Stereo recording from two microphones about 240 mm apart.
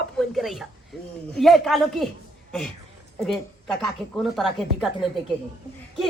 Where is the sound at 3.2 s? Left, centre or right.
Centre.